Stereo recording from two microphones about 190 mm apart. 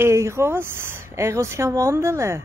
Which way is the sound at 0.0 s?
15° right (ahead or behind).